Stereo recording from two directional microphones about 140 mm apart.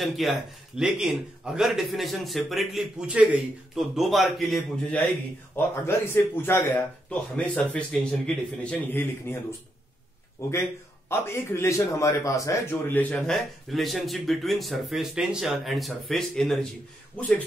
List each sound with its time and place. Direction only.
0.0 s a man's voice: centre (ahead or behind)
5.5 s speech: 15° left (ahead or behind)
10.4 s a man's voice: 20° left (ahead or behind)
13.3 s a man's voice: centre (ahead or behind)